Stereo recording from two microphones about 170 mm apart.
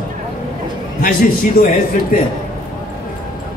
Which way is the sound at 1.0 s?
55° left (ahead or behind).